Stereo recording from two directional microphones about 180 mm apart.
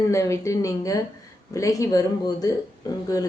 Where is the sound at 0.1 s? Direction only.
15° left (ahead or behind).